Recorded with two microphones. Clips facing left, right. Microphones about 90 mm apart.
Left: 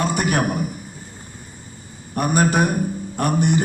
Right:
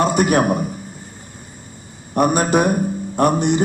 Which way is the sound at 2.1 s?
20° right (ahead or behind).